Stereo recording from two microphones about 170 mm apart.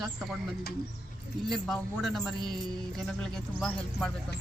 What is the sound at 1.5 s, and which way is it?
Speech, centre (ahead or behind).